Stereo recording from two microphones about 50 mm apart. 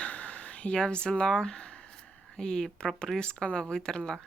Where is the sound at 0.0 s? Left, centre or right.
Left.